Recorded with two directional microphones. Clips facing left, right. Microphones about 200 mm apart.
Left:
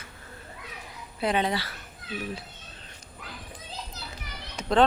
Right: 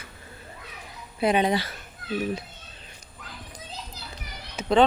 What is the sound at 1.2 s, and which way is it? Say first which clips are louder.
Speech: right 4 dB; 15° right (ahead or behind).